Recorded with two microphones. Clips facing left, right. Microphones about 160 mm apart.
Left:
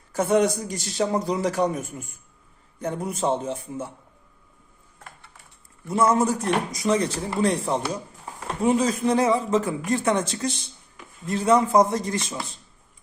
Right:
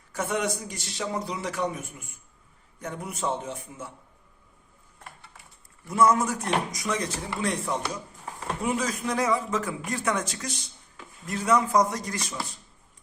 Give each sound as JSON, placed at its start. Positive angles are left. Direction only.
{"t": 0.1, "sound": "speech", "side_deg": 35}
{"t": 5.9, "sound": "a man's voice", "side_deg": 30}